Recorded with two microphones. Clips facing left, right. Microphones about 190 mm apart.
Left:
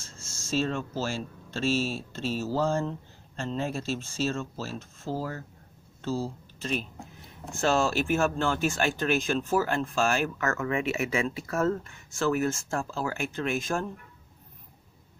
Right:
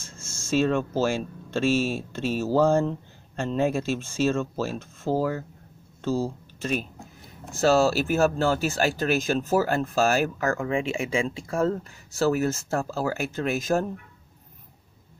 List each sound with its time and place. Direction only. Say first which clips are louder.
0.5 s speech: right 6 dB; 55° right (ahead or behind)
7.5 s speech: right 5 dB; 40° right (ahead or behind)